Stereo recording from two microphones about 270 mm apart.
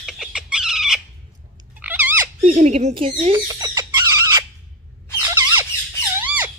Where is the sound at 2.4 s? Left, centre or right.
Right.